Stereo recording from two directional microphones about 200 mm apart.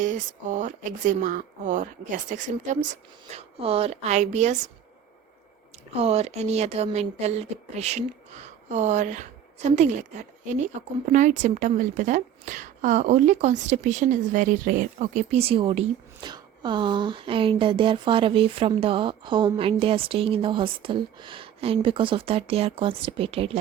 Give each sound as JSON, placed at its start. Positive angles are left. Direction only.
{"t": 0.0, "sound": "speech", "side_deg": -40}
{"t": 6.0, "sound": "a woman's voice", "side_deg": -30}